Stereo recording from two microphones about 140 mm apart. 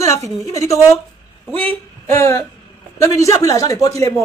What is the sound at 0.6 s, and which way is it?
Speech, 25° left (ahead or behind).